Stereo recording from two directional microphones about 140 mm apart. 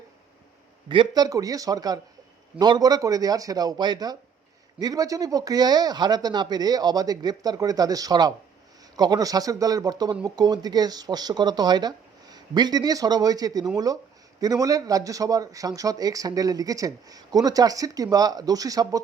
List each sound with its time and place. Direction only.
0.9 s speech: 30° right (ahead or behind)